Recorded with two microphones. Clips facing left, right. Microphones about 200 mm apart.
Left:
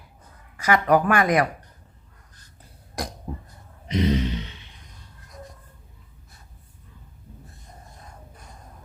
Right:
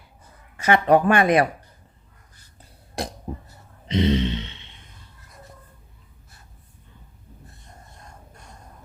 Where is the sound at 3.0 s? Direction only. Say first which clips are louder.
Right 2 dB; 25° right (ahead or behind).